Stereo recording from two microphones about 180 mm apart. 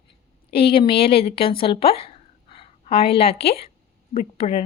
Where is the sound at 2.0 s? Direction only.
30° left (ahead or behind).